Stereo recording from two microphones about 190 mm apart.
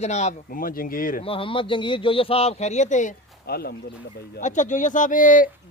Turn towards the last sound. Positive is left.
turn(degrees=45)  # may be behind; listen again after turning